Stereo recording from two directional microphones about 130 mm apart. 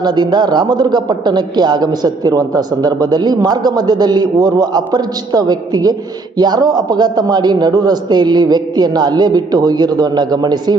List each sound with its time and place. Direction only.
0.0 s a man's voice: 35° right (ahead or behind)